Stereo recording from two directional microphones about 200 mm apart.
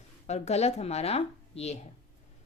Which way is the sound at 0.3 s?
35° left (ahead or behind).